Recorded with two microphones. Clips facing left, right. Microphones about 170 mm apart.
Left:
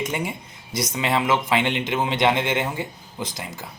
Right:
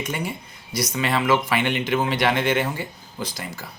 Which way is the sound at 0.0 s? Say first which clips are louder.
Left 1 dB; 20° left (ahead or behind).